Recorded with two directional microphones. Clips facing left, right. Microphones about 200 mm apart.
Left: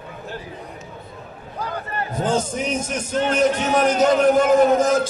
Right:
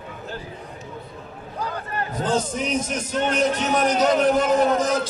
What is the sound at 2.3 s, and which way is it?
A man's voice, 45° left (ahead or behind).